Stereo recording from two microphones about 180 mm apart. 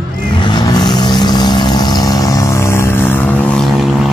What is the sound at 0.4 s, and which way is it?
Vehicle, 25° left (ahead or behind).